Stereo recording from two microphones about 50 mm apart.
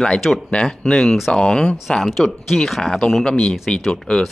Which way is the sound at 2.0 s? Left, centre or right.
Centre.